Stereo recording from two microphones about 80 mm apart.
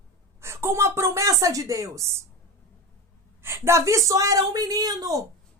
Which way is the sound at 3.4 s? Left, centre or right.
Right.